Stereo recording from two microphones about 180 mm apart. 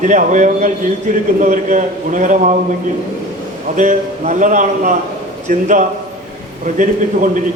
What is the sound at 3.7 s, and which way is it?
A man's voice, 45° right (ahead or behind).